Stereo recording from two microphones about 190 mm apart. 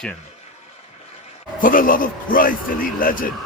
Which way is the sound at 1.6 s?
45° left (ahead or behind).